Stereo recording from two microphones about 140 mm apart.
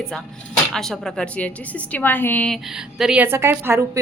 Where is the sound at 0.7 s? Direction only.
5° left (ahead or behind).